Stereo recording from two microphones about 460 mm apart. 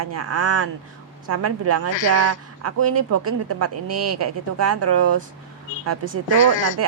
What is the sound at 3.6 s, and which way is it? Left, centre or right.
Speech, right.